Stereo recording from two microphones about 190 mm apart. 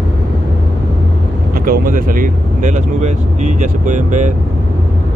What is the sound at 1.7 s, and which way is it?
Speech, 45° right (ahead or behind).